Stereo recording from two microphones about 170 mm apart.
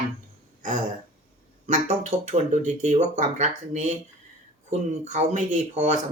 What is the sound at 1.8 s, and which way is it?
Speech, 40° right (ahead or behind).